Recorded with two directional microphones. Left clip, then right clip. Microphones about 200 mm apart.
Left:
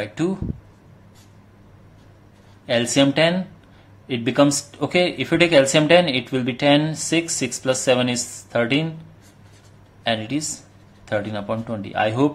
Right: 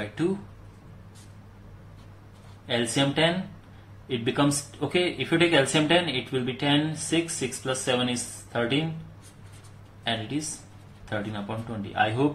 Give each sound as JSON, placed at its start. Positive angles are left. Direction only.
{"t": 2.6, "sound": "speech", "side_deg": 45}
{"t": 10.0, "sound": "speech", "side_deg": 50}